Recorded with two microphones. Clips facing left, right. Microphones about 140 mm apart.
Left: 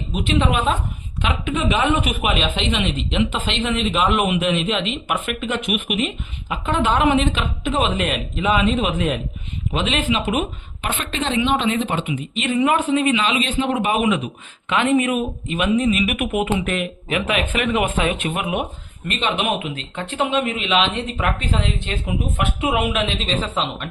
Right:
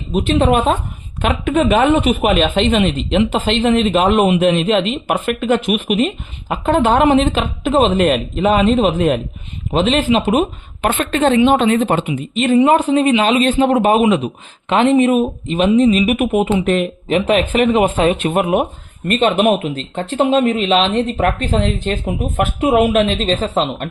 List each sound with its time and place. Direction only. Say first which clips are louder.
0.1 s a woman's voice: right 7 dB; 40° right (ahead or behind)
2.0 s speech: right 8 dB; 30° right (ahead or behind)
2.2 s speech: right 8 dB; 45° right (ahead or behind)
10.8 s a woman's voice: right 10 dB; 50° right (ahead or behind)